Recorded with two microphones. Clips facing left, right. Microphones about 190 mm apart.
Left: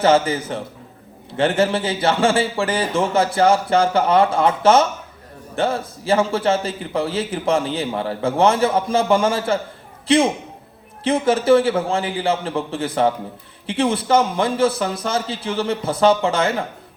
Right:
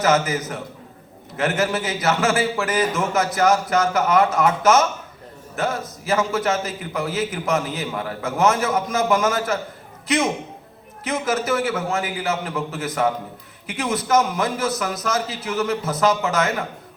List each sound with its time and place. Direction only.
0.0 s a man's voice: 30° left (ahead or behind)